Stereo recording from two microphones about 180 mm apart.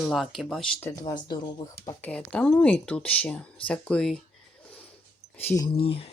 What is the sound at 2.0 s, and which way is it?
Speech, 5° left (ahead or behind).